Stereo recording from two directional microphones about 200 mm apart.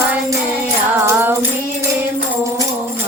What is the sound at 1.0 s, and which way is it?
Music, 10° right (ahead or behind).